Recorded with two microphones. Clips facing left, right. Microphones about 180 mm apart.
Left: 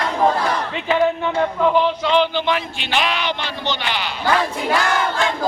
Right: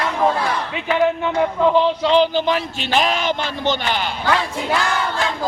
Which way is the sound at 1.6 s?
20° right (ahead or behind).